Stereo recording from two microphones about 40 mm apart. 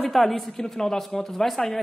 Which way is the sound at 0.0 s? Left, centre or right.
Centre.